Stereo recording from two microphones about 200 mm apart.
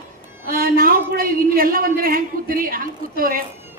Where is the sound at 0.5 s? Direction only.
45° right (ahead or behind).